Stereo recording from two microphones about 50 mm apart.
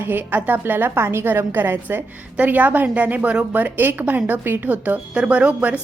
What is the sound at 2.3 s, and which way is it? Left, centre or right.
Speech, right.